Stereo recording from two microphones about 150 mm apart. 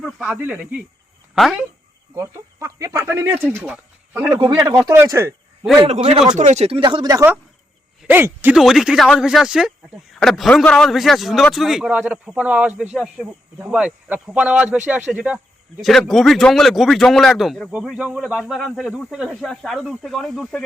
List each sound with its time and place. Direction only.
0.0 s speech: 5° right (ahead or behind)
2.1 s speech: 20° right (ahead or behind)
4.4 s speech: 25° right (ahead or behind)
5.8 s speech: 40° right (ahead or behind)
6.8 s speech: 30° right (ahead or behind)
8.0 s speech: 15° right (ahead or behind)
8.5 s speech: centre (ahead or behind)